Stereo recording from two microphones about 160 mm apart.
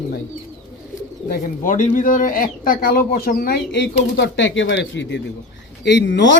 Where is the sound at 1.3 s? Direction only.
55° left (ahead or behind).